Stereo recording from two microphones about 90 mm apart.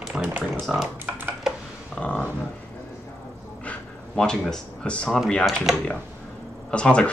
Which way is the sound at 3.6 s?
10° left (ahead or behind).